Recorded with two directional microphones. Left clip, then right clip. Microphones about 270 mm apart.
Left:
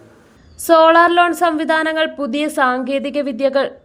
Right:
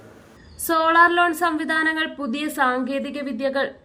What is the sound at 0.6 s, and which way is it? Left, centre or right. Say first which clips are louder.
A woman's voice: left 6 dB; left.